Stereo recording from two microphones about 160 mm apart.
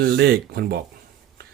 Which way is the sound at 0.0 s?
85° right.